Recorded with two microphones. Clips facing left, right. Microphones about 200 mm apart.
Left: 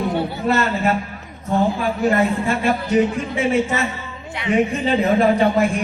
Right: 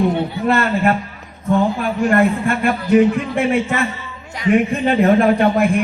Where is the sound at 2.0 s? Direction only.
55° right (ahead or behind).